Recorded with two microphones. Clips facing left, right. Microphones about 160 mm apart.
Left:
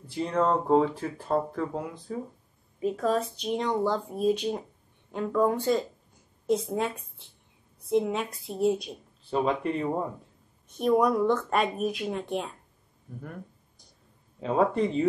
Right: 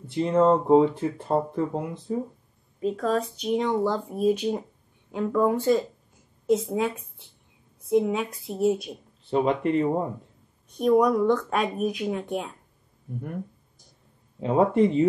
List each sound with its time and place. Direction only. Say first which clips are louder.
0.0 s speech: right 6 dB; 25° right (ahead or behind)
2.8 s speech: right 1 dB; 5° left (ahead or behind)
9.3 s speech: right 3 dB; 20° right (ahead or behind)
10.7 s speech: right 3 dB; centre (ahead or behind)
14.4 s speech: right 4 dB; 20° right (ahead or behind)